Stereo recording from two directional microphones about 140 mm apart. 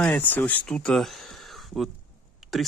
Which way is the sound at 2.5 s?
Centre (ahead or behind).